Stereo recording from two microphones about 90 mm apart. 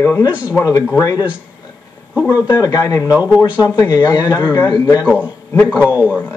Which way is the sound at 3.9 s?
50° left (ahead or behind).